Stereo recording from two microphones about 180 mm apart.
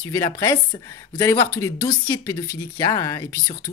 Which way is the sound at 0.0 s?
15° left (ahead or behind).